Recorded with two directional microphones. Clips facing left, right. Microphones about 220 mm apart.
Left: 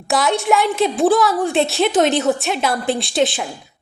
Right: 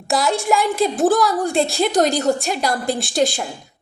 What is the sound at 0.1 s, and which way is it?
A woman's voice, centre (ahead or behind).